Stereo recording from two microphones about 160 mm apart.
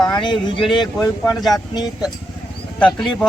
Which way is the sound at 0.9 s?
Centre (ahead or behind).